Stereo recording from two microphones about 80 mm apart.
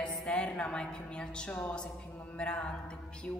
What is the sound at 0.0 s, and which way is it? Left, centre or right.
A woman's voice, centre.